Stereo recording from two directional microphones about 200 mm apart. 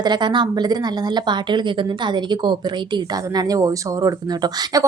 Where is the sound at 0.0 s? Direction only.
20° right (ahead or behind).